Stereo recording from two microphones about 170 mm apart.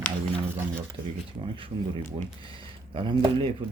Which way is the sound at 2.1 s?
30° right (ahead or behind).